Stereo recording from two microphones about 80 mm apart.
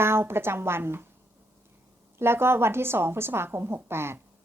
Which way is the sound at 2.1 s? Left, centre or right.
Right.